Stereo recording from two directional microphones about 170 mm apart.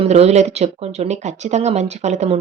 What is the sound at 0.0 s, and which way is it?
Speech, 40° right (ahead or behind).